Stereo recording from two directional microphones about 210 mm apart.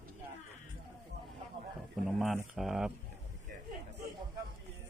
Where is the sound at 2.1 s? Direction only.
Centre (ahead or behind).